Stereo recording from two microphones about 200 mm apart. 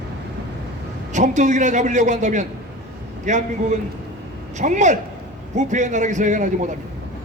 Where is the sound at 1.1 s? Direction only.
35° right (ahead or behind).